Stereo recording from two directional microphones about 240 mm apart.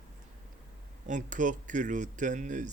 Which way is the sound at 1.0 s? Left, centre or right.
Right.